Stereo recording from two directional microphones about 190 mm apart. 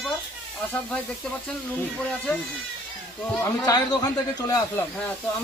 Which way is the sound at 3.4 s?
20° left (ahead or behind).